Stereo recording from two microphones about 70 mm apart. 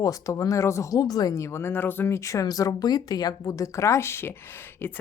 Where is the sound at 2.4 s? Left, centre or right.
Left.